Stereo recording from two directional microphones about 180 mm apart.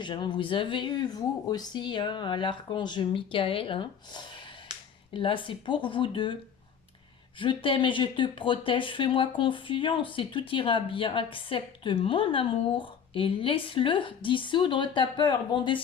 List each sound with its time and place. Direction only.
0.0 s speech: 25° left (ahead or behind)
4.7 s finger snapping: 25° right (ahead or behind)
5.1 s speech: 30° left (ahead or behind)
7.3 s speech: 30° left (ahead or behind)